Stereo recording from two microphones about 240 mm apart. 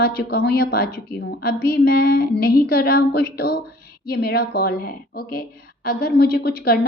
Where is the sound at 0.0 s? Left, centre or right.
Left.